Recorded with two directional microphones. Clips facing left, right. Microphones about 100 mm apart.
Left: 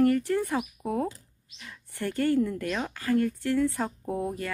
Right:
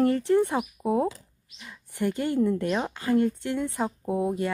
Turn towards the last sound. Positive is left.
turn(degrees=-20)  # may be behind; listen again after turning